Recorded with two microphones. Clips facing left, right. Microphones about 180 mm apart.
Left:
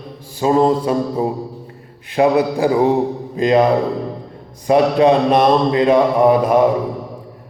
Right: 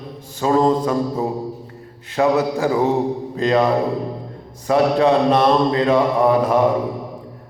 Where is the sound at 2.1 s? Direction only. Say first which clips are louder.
Left 3 dB; 15° left (ahead or behind).